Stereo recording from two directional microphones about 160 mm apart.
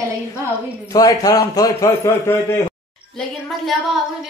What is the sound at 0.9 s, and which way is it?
A man's voice, 25° left (ahead or behind).